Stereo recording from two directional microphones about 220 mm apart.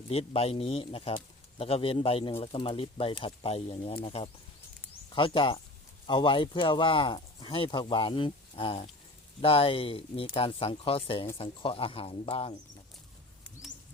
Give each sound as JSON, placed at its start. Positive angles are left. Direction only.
{"t": 0.1, "sound": "speech", "side_deg": 25}